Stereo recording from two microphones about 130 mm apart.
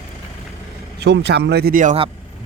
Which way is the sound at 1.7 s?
80° right.